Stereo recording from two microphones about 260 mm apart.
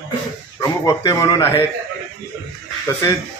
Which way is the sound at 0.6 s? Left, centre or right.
Centre.